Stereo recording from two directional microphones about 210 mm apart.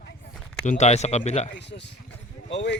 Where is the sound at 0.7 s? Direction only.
30° left (ahead or behind).